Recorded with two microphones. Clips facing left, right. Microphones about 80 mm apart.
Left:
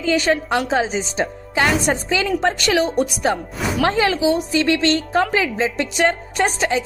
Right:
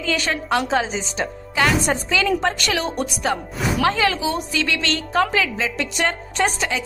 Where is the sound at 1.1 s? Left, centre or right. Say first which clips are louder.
Left 3 dB; left.